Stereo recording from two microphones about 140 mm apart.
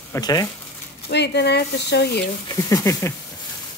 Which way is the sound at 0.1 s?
25° left (ahead or behind).